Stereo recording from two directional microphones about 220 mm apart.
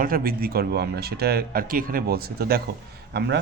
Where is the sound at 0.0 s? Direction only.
40° right (ahead or behind).